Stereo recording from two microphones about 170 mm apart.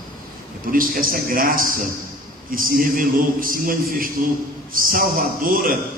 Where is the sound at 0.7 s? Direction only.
55° right (ahead or behind).